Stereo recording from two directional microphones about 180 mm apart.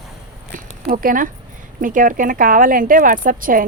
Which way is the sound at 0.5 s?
50° right (ahead or behind).